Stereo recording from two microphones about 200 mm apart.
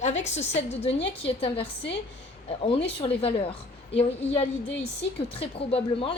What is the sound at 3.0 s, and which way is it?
A woman's voice, 30° left (ahead or behind).